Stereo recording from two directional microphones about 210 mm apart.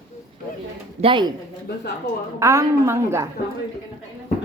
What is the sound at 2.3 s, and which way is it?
Speech, 15° right (ahead or behind).